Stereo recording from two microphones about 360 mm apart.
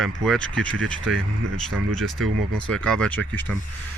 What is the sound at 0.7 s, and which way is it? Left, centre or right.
Speech, right.